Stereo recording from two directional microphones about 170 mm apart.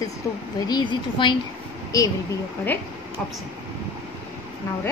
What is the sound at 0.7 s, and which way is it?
Speech, 25° left (ahead or behind).